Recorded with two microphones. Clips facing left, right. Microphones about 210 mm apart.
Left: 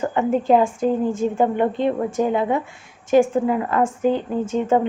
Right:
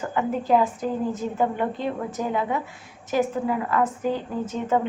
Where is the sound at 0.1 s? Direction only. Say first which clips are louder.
Left 3 dB; 25° left (ahead or behind).